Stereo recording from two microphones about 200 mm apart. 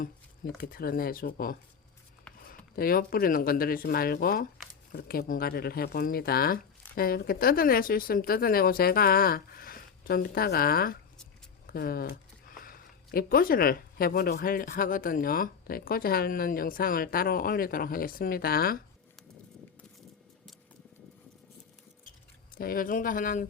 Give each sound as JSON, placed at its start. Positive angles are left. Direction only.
{"t": 0.0, "sound": "speech", "side_deg": 45}
{"t": 22.5, "sound": "speech", "side_deg": 45}